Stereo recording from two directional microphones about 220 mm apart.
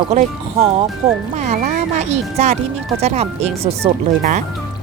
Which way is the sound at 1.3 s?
35° right (ahead or behind).